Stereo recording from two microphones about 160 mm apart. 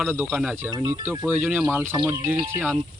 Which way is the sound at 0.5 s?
15° right (ahead or behind).